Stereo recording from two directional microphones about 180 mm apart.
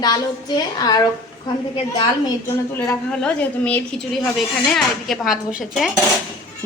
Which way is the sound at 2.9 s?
5° left (ahead or behind).